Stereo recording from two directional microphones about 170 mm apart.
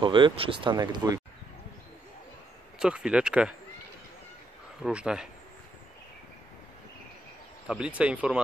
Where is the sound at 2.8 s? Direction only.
5° right (ahead or behind).